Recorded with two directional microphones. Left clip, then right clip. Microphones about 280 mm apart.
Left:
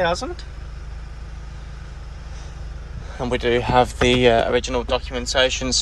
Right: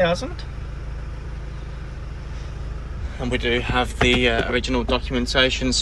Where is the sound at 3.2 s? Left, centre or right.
Centre.